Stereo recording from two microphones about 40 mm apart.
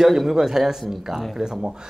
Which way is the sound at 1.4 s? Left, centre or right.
Centre.